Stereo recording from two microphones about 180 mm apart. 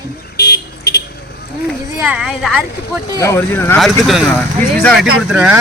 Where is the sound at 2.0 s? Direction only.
5° right (ahead or behind).